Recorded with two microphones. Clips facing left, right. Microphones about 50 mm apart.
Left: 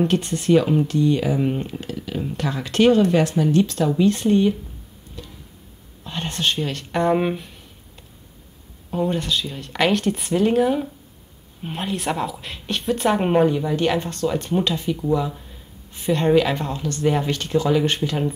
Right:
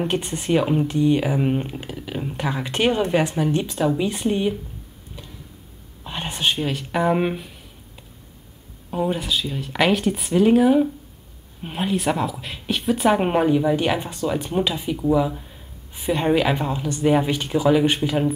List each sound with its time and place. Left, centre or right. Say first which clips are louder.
0.0 s speech: left 3 dB; centre
6.0 s speech: even; centre